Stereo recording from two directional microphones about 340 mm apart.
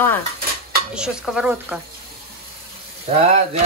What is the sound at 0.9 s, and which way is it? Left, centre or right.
Speech, centre.